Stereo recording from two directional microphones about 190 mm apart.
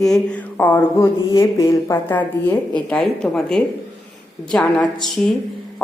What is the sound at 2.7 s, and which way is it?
Speech, 5° left (ahead or behind).